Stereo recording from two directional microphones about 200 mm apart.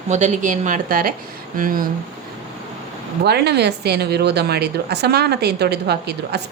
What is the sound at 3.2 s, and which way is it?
Speech, 55° right (ahead or behind).